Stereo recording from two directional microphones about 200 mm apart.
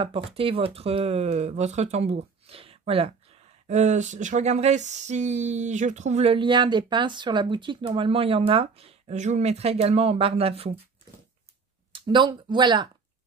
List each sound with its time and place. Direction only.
0.0 s speech: 25° right (ahead or behind)
3.6 s a sound: 35° right (ahead or behind)
11.9 s speech: 25° right (ahead or behind)